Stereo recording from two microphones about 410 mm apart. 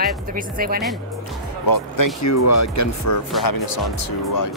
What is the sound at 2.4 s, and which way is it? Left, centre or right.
Speech, left.